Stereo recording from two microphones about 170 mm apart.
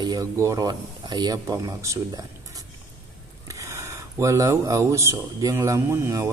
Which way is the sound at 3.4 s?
20° right (ahead or behind).